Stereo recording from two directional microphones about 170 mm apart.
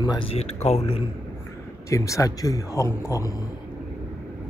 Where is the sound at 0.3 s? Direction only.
40° left (ahead or behind).